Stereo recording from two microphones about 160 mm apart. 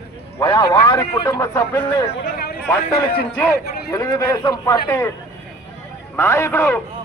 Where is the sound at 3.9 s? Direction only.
20° left (ahead or behind).